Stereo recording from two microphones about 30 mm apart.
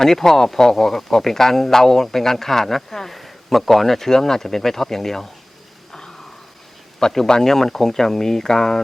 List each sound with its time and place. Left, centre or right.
0.0 s speech: centre
5.9 s a sound: centre
7.0 s speech: centre